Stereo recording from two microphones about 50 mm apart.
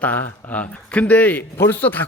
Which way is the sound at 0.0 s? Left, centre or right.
Left.